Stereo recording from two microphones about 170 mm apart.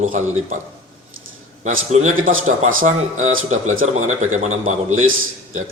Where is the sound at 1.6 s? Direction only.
45° right (ahead or behind).